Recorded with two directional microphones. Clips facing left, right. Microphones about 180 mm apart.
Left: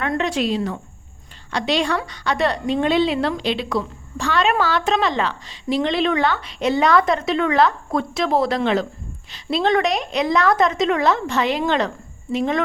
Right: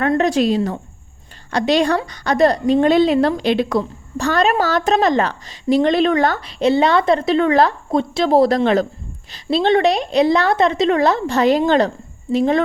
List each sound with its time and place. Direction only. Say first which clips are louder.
0.2 s a woman's voice: right 5 dB; 40° right (ahead or behind)